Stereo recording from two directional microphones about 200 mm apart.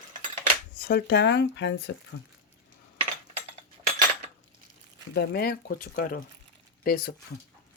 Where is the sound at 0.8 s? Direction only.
50° left (ahead or behind).